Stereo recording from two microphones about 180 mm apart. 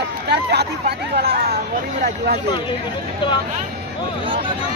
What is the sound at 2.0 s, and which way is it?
Speech, 60° right (ahead or behind).